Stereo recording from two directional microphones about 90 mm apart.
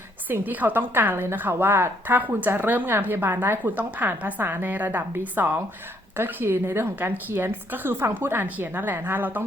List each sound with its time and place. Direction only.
0.3 s a woman's voice: 20° right (ahead or behind)